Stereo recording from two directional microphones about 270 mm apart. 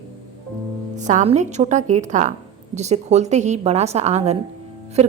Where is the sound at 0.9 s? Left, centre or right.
Right.